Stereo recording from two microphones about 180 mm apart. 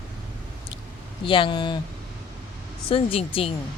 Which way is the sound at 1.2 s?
30° left (ahead or behind).